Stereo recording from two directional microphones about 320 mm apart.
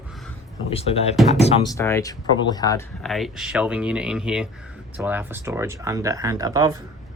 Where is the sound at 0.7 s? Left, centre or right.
Centre.